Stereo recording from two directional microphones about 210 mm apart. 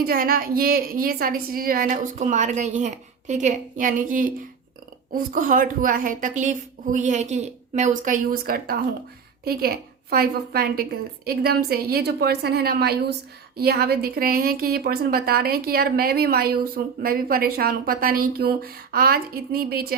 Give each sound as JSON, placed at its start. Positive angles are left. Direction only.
{"t": 0.0, "sound": "a woman's voice", "side_deg": -45}